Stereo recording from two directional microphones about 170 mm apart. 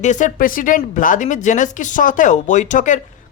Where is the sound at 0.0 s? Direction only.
45° left (ahead or behind).